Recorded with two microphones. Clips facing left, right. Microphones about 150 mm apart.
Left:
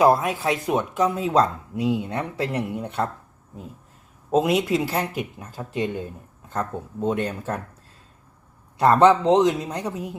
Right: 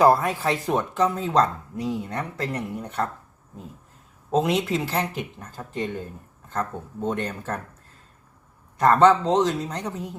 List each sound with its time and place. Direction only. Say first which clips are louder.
0.0 s speech: even; 15° left (ahead or behind)
2.8 s speech: left 2 dB; 25° left (ahead or behind)
4.3 s speech: left 2 dB; 5° left (ahead or behind)
7.0 s speech: left 3 dB; 10° left (ahead or behind)
8.8 s speech: left 1 dB; 10° left (ahead or behind)